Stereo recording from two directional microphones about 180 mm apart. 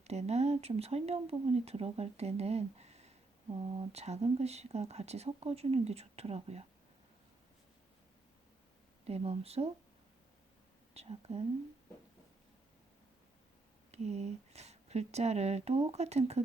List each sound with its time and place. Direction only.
0.0 s speech: 35° right (ahead or behind)
9.0 s speech: 35° right (ahead or behind)
10.9 s speech: 35° right (ahead or behind)
13.9 s speech: 35° right (ahead or behind)